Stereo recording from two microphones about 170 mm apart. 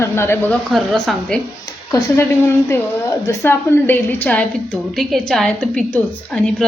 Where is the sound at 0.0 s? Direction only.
15° left (ahead or behind).